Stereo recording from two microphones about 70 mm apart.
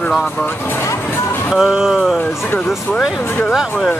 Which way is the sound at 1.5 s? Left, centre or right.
Centre.